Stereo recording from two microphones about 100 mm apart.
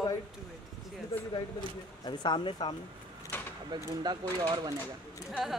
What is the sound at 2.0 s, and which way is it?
Speech, 50° left (ahead or behind).